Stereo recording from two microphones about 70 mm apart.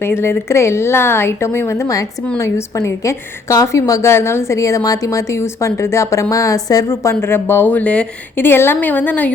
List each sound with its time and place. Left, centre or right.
0.0 s a woman's voice: left
6.8 s a woman's voice: left